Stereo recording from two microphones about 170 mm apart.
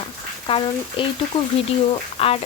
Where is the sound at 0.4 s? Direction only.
30° left (ahead or behind).